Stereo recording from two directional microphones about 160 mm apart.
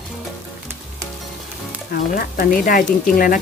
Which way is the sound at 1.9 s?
65° left (ahead or behind).